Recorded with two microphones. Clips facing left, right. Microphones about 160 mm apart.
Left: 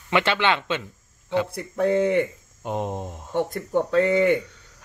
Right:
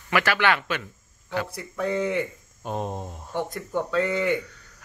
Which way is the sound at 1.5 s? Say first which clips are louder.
Left 6 dB; 50° left (ahead or behind).